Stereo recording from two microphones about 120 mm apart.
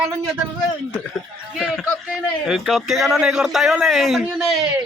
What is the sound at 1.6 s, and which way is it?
A man's voice, 5° left (ahead or behind).